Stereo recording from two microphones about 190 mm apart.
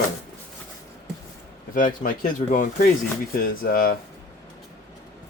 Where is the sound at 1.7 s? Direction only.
45° left (ahead or behind).